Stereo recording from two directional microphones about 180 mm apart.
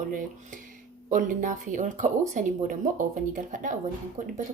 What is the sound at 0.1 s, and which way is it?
Speech, 50° right (ahead or behind).